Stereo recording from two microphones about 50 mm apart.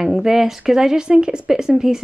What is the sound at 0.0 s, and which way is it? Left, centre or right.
A woman's voice, centre.